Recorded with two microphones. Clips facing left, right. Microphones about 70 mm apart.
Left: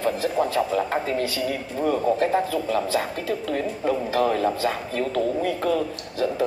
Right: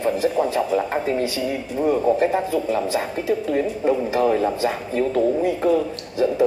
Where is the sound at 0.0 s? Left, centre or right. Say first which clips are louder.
Right 3 dB; right.